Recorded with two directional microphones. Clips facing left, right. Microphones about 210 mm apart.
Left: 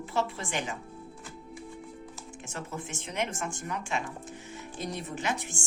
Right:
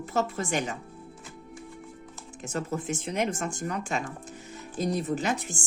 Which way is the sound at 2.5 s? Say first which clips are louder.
Right 8 dB; 40° right (ahead or behind).